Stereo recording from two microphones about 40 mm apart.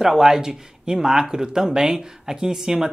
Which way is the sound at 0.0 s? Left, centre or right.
Centre.